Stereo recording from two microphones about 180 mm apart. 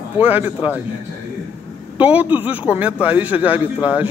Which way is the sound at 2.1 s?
10° right (ahead or behind).